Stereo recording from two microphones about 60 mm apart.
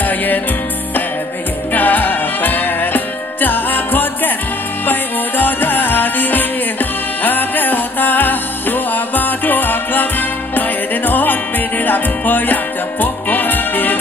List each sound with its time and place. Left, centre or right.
1.7 s music: left
5.4 s music: left
11.1 s music: left